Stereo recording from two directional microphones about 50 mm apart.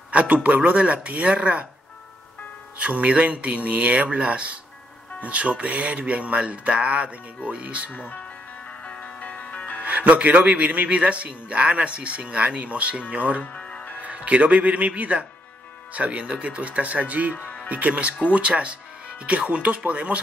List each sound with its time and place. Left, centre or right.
0.1 s speech: right
2.8 s speech: right
7.9 s speech: left
8.6 s music: left
9.8 s speech: right
13.4 s music: left
14.0 s speech: right